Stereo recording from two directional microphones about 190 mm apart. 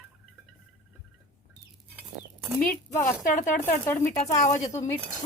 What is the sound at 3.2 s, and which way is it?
Speech, 45° left (ahead or behind).